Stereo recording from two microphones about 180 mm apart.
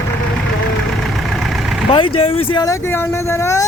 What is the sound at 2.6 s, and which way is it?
Speech, 15° left (ahead or behind).